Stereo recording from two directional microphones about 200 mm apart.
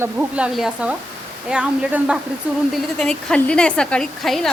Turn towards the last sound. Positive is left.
turn(degrees=0)  # may be behind; listen again after turning